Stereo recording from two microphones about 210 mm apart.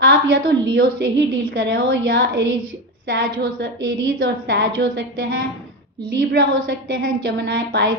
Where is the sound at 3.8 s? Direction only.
65° right (ahead or behind).